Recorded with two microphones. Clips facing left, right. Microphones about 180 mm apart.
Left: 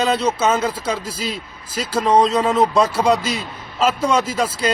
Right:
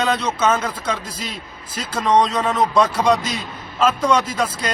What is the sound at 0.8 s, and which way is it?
A man's voice, 10° left (ahead or behind).